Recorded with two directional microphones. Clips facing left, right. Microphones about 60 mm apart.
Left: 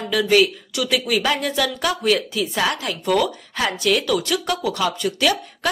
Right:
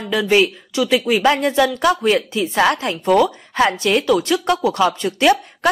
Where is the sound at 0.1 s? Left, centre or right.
Right.